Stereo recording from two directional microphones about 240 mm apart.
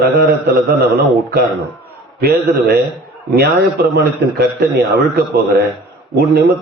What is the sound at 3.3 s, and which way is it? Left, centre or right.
A man's voice, right.